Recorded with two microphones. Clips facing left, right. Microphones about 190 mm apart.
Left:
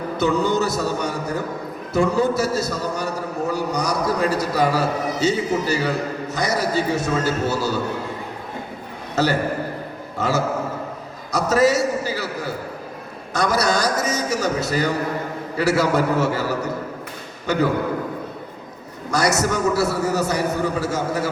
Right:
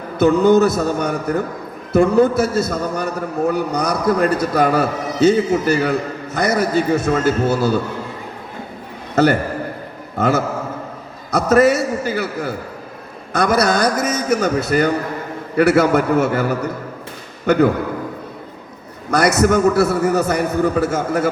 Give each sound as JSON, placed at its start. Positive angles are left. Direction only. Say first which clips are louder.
{"t": 0.2, "sound": "a man's voice", "louder": "right 8 dB", "side_deg": -55}
{"t": 9.1, "sound": "a man's voice", "louder": "right 5 dB", "side_deg": -55}
{"t": 13.3, "sound": "a man's voice", "louder": "right 4 dB", "side_deg": -55}
{"t": 19.1, "sound": "a man's voice", "louder": "right 6 dB", "side_deg": -55}